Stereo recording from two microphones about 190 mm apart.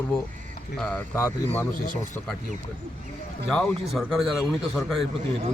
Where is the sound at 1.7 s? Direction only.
45° left (ahead or behind).